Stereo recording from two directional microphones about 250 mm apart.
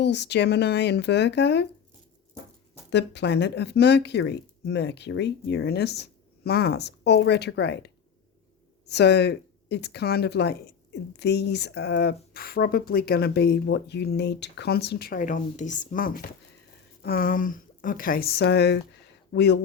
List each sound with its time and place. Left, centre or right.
0.0 s speech: left
2.9 s speech: left
8.9 s speech: left